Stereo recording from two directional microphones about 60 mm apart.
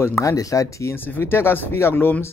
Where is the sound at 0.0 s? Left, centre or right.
Left.